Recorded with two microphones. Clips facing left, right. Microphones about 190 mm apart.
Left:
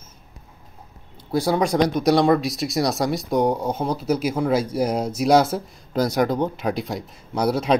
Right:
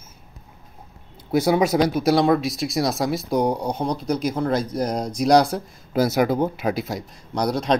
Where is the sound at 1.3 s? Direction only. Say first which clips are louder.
Right 2 dB; 20° right (ahead or behind).